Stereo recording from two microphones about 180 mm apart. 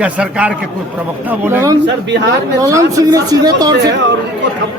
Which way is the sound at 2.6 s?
20° right (ahead or behind).